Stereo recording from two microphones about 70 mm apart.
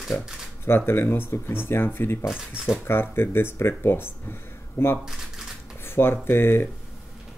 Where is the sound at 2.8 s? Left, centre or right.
Left.